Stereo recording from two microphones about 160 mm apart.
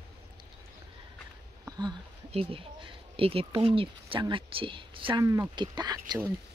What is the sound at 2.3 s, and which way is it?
Speech, 35° right (ahead or behind).